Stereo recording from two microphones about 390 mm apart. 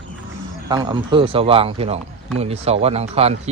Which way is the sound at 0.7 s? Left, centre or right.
Centre.